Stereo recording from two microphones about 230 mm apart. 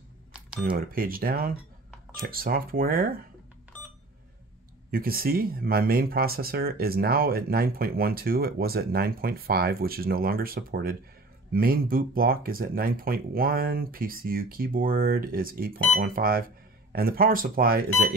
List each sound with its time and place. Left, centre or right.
0.7 s speech: right
4.9 s speech: right